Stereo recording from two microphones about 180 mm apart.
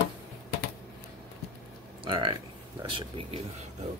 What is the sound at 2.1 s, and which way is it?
Speech, 30° right (ahead or behind).